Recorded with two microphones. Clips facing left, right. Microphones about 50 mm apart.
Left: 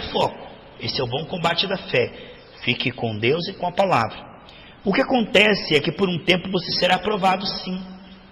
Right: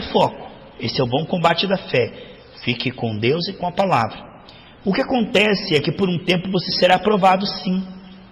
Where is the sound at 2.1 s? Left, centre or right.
Left.